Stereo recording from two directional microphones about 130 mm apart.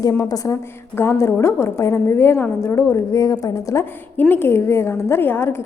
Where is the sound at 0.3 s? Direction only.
25° left (ahead or behind).